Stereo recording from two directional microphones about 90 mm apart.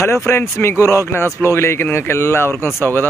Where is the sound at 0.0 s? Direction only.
30° left (ahead or behind).